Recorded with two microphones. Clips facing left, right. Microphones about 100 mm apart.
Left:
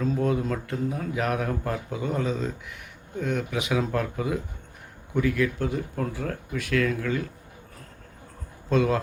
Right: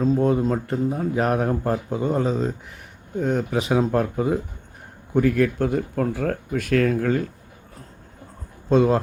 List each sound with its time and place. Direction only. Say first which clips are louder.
0.0 s speech: right 6 dB; 35° right (ahead or behind)
5.1 s speech: right 5 dB; 45° right (ahead or behind)
8.7 s speech: right 5 dB; 35° right (ahead or behind)